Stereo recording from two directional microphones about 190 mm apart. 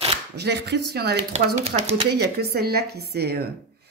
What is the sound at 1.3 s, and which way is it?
Speech, 35° right (ahead or behind).